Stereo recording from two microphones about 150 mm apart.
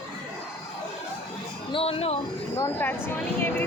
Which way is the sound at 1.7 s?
35° left (ahead or behind).